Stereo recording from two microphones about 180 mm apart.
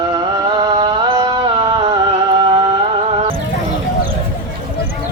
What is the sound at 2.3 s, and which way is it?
Music, 25° right (ahead or behind).